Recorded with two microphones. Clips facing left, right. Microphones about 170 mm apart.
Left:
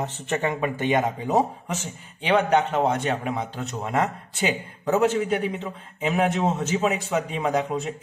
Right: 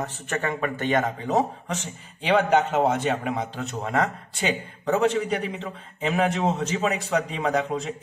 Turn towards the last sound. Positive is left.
turn(degrees=0)  # may be behind; listen again after turning